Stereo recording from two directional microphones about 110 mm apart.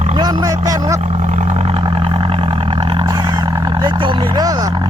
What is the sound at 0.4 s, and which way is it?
Speech, 30° right (ahead or behind).